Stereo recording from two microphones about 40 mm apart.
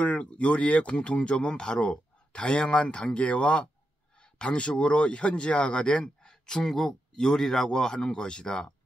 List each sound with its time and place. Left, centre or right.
0.0 s speech: left